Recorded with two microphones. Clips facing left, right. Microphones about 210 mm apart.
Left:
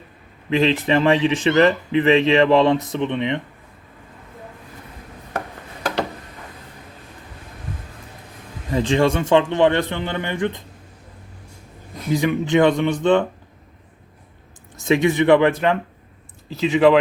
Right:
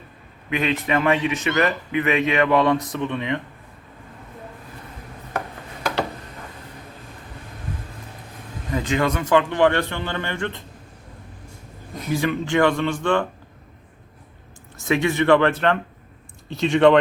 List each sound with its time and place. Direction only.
0.5 s speech: 30° left (ahead or behind)
8.7 s speech: 30° left (ahead or behind)
12.1 s speech: 20° left (ahead or behind)
14.8 s speech: 20° left (ahead or behind)